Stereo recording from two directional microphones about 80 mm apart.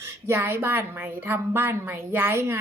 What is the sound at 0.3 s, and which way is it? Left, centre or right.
A woman's voice, right.